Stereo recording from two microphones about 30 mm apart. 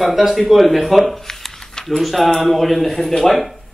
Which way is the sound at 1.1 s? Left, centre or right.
Centre.